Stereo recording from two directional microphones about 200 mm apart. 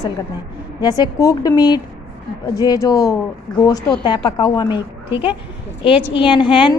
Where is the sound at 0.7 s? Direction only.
20° left (ahead or behind).